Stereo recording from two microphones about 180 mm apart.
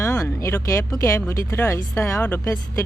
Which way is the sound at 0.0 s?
15° left (ahead or behind).